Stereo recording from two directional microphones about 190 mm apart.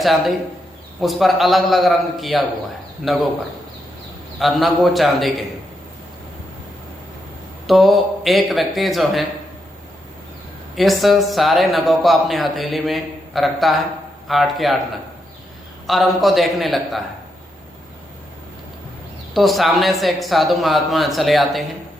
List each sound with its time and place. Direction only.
0.0 s speech: centre (ahead or behind)
4.4 s speech: centre (ahead or behind)
7.7 s speech: centre (ahead or behind)
10.8 s speech: centre (ahead or behind)
15.9 s speech: centre (ahead or behind)
19.3 s speech: centre (ahead or behind)